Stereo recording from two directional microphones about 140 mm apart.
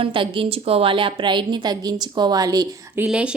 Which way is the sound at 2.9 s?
5° right (ahead or behind).